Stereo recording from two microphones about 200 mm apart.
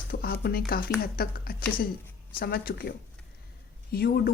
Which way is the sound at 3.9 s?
50° left (ahead or behind).